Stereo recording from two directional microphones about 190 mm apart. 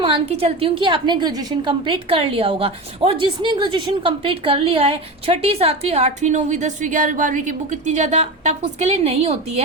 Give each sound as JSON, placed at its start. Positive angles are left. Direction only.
{"t": 0.0, "sound": "a woman's voice", "side_deg": -30}